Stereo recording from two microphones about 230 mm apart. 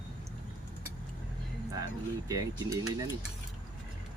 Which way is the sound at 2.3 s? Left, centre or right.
Centre.